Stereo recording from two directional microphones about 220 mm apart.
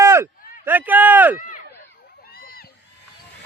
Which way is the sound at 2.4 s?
45° left (ahead or behind).